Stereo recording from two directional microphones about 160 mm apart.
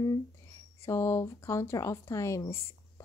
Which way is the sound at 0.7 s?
15° left (ahead or behind).